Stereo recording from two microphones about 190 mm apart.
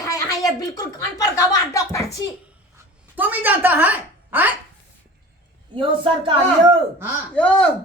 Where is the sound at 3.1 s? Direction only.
10° right (ahead or behind).